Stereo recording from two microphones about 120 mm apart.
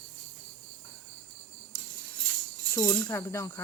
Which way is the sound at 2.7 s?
20° left (ahead or behind).